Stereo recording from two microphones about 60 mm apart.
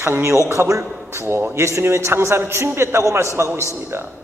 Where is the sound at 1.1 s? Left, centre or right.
Right.